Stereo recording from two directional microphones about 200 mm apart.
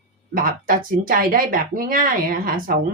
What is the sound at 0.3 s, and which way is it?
Speech, 45° right (ahead or behind).